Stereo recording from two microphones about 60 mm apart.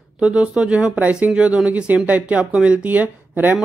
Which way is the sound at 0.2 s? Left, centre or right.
Centre.